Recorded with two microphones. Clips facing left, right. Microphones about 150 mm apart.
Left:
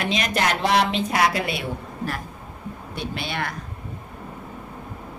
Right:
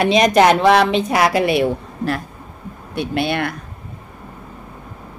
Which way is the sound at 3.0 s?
60° right (ahead or behind).